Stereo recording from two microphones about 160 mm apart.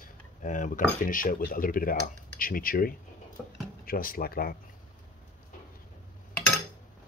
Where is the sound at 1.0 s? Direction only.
60° left (ahead or behind).